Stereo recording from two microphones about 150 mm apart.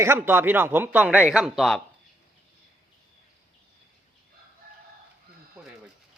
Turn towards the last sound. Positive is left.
turn(degrees=-10)  # may be behind; listen again after turning